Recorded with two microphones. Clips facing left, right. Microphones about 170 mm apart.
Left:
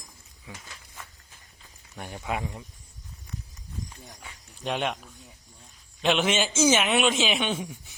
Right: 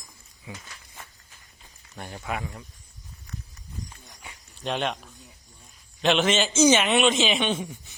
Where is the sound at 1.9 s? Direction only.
10° left (ahead or behind).